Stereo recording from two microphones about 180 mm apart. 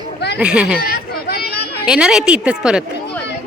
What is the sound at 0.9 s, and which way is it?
Chatter, 60° left (ahead or behind).